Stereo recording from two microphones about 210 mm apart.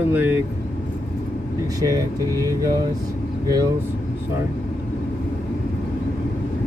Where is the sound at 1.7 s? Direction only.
15° right (ahead or behind).